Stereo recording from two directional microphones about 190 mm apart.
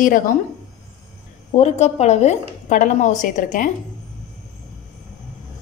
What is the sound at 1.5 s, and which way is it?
A woman's voice, 35° left (ahead or behind).